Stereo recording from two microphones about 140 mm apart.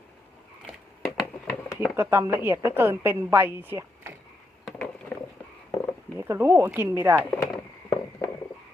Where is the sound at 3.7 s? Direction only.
15° right (ahead or behind).